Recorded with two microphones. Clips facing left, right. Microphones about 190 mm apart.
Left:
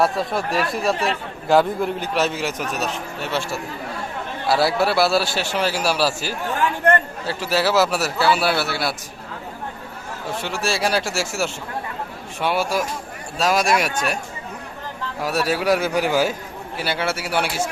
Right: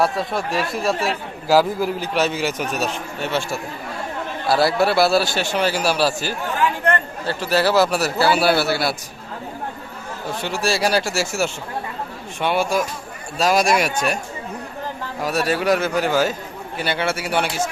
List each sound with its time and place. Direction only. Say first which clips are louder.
0.0 s a man's voice: even; centre (ahead or behind)
10.4 s a man's voice: right 3 dB; centre (ahead or behind)
15.2 s a man's voice: right 1 dB; 5° left (ahead or behind)